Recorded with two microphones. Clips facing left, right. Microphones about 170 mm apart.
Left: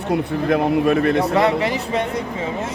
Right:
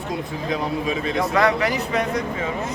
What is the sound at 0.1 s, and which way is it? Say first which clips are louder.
Speech: left 8 dB; 60° left (ahead or behind).